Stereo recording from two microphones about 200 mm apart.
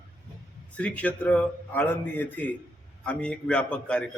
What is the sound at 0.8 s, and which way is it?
A man's voice, 5° left (ahead or behind).